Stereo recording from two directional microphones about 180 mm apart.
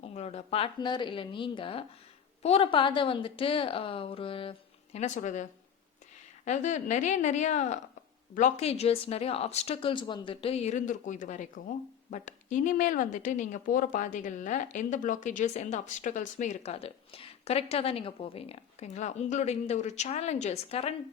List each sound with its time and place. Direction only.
0.0 s a woman's voice: 35° left (ahead or behind)
4.9 s speech: 40° left (ahead or behind)